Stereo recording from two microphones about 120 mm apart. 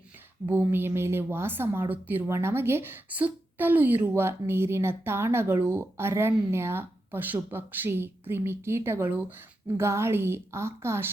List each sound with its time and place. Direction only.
0.4 s a woman's voice: 20° right (ahead or behind)